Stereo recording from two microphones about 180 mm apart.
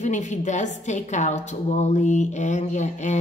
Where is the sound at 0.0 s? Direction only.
40° left (ahead or behind).